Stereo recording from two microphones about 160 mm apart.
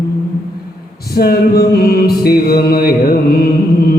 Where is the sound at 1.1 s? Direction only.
75° left (ahead or behind).